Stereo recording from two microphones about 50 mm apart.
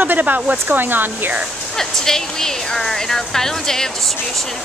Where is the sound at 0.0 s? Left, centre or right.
Right.